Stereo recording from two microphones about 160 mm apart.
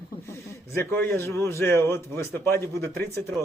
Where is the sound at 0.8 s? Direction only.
15° left (ahead or behind).